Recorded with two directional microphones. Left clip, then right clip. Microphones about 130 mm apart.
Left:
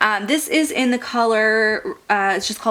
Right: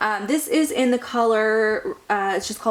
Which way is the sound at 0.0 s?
20° left (ahead or behind).